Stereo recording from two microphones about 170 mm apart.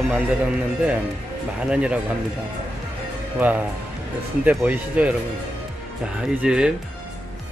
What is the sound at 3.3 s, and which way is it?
Speech, 10° right (ahead or behind).